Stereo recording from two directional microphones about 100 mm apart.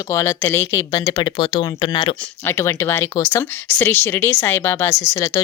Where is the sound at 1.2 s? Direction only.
50° left (ahead or behind).